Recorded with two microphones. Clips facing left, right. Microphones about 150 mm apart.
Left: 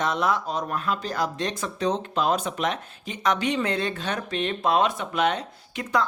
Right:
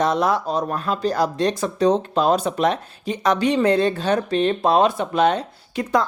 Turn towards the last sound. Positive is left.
turn(degrees=-35)  # may be behind; listen again after turning